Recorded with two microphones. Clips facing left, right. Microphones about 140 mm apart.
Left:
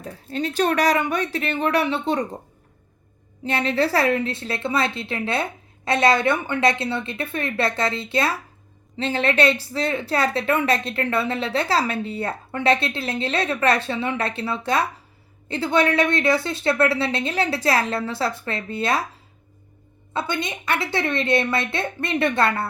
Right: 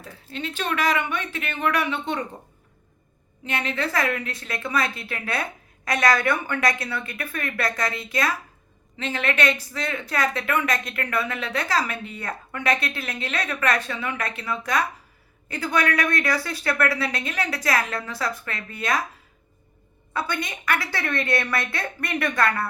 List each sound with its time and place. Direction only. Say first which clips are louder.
0.0 s speech: left 6 dB; 40° left (ahead or behind)
3.4 s a woman's voice: left 6 dB; 35° left (ahead or behind)
20.1 s a woman's voice: left 2 dB; 25° left (ahead or behind)